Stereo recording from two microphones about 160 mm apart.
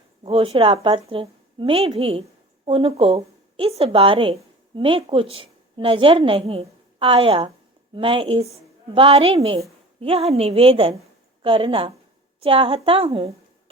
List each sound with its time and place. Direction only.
0.2 s a woman's voice: 35° right (ahead or behind)